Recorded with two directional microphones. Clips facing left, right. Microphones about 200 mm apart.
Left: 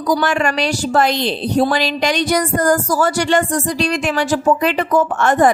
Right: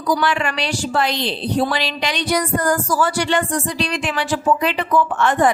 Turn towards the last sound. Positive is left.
turn(degrees=45)  # may be behind; listen again after turning